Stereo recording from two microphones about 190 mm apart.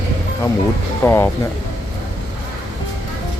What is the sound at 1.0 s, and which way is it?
Speech, 10° left (ahead or behind).